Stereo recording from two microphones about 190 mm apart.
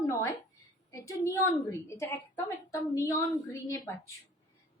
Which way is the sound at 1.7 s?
15° left (ahead or behind).